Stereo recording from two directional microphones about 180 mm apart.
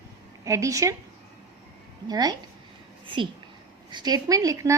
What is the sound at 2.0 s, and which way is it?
Speech, 20° right (ahead or behind).